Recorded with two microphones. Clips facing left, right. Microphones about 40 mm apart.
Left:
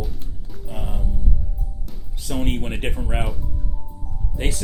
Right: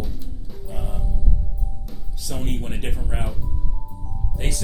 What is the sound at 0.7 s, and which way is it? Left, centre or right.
Music, left.